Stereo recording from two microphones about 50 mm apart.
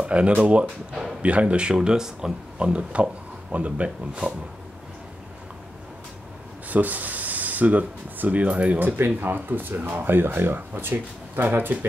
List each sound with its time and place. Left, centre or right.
0.0 s speech: right
2.7 s speech: right
6.7 s speech: right
8.7 s speech: right